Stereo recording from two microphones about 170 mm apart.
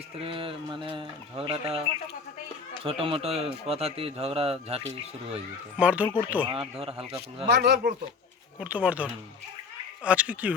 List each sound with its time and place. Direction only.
0.2 s speech: 35° right (ahead or behind)
5.7 s speech: 10° right (ahead or behind)
6.4 s speech: 30° right (ahead or behind)
7.4 s speech: 70° right (ahead or behind)
8.5 s speech: 10° right (ahead or behind)